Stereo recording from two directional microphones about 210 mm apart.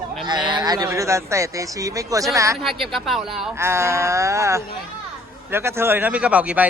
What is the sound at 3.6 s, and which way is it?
Speech, 10° right (ahead or behind).